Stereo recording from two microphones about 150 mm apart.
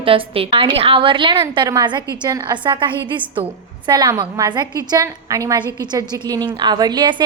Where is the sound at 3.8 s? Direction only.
25° right (ahead or behind).